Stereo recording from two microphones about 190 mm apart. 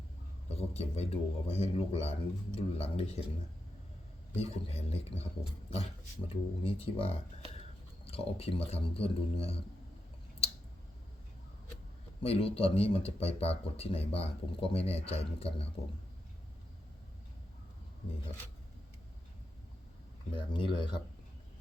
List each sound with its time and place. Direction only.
0.5 s speech: 35° left (ahead or behind)
4.4 s speech: 30° left (ahead or behind)
12.2 s speech: 30° left (ahead or behind)
20.3 s speech: 25° left (ahead or behind)